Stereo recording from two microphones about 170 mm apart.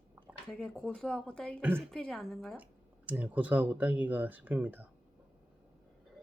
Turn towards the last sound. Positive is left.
turn(degrees=-10)  # may be behind; listen again after turning